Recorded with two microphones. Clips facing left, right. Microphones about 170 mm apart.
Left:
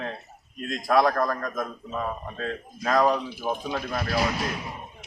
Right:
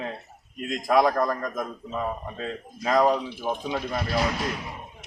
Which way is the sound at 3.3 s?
5° left (ahead or behind).